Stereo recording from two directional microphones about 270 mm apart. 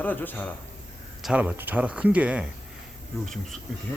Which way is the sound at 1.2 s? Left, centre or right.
Centre.